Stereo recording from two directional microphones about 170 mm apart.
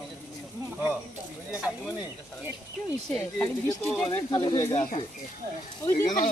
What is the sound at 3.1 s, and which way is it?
Speech, 15° left (ahead or behind).